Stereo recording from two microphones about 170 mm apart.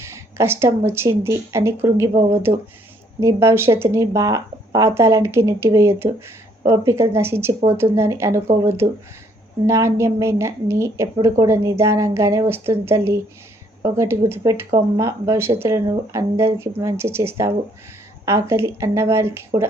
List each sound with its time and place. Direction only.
0.0 s a woman's voice: 15° right (ahead or behind)